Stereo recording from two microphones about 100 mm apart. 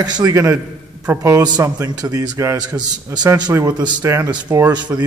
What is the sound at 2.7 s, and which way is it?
Speech, 45° right (ahead or behind).